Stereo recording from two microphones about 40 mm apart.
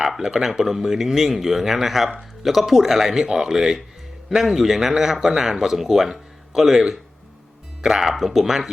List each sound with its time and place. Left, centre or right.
0.2 s speech: centre
8.0 s speech: centre